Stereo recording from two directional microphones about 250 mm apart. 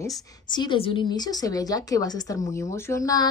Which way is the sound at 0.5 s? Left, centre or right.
Centre.